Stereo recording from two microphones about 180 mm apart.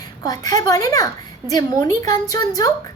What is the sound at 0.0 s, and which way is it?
A woman's voice, 20° left (ahead or behind).